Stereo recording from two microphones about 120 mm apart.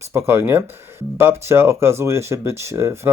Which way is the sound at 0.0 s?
20° right (ahead or behind).